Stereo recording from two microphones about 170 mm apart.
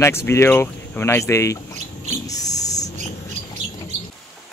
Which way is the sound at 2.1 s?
20° left (ahead or behind).